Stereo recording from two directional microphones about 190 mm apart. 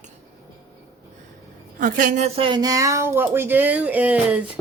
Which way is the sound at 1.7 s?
45° right (ahead or behind).